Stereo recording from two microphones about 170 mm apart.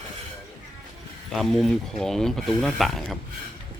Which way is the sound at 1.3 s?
Centre (ahead or behind).